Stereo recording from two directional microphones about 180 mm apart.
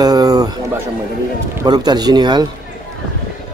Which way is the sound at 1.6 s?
25° right (ahead or behind).